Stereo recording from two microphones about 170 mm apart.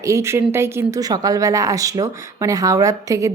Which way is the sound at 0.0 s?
15° right (ahead or behind).